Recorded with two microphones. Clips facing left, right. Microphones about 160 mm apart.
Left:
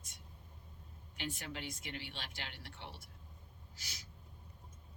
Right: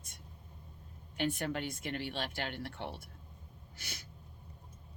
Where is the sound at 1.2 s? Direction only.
55° right (ahead or behind).